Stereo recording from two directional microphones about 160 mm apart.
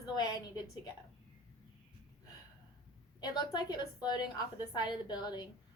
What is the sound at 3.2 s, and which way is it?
A woman's voice, 25° left (ahead or behind).